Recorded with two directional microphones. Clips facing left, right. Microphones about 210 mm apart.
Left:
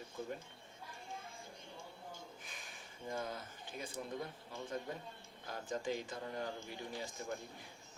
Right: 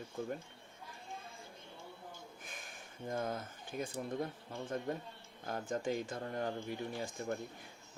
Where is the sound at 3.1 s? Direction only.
50° right (ahead or behind).